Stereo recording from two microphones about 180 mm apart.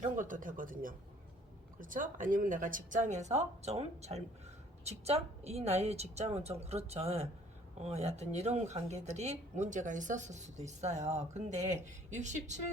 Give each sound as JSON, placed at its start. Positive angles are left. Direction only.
{"t": 0.0, "sound": "speech", "side_deg": -45}